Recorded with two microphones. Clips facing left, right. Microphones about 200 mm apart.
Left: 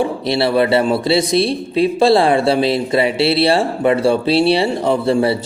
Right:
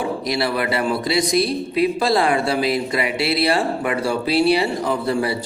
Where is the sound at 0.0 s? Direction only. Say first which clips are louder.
Left 5 dB; 30° left (ahead or behind).